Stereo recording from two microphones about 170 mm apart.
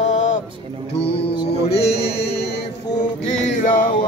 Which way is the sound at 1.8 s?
70° left (ahead or behind).